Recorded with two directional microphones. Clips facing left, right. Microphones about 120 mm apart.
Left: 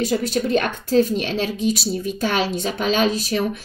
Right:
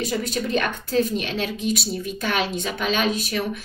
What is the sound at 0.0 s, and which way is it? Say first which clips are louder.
A woman's voice: left 4 dB; 35° left (ahead or behind).